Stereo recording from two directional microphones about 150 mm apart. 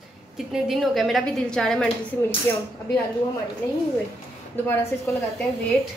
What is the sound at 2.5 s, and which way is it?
Speech, 15° left (ahead or behind).